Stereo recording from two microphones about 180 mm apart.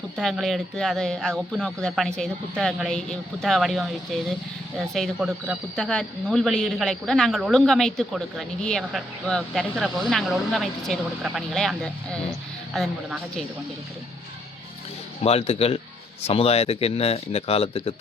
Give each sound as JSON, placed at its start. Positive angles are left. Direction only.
{"t": 0.2, "sound": "speech", "side_deg": 0}
{"t": 15.2, "sound": "speech", "side_deg": 35}